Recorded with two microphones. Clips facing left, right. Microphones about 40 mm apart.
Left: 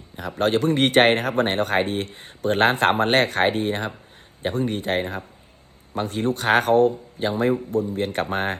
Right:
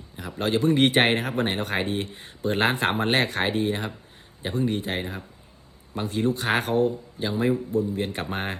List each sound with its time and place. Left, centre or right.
0.2 s speech: left